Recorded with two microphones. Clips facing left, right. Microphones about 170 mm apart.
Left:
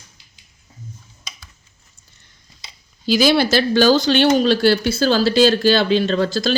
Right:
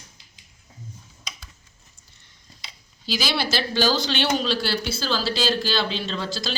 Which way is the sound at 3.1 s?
50° left (ahead or behind).